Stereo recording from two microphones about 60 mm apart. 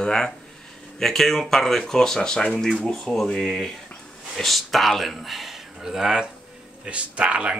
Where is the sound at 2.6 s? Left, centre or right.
Centre.